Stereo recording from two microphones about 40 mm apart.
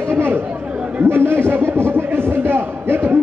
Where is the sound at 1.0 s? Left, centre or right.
Right.